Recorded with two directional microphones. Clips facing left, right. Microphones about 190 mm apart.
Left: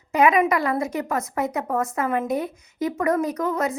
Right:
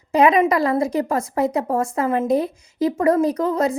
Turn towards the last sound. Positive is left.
turn(degrees=-30)  # may be behind; listen again after turning